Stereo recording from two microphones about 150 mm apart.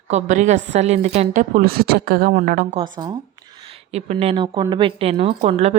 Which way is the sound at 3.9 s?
45° right (ahead or behind).